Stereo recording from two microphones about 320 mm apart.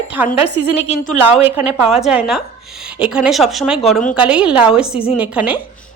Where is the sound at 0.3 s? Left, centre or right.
Centre.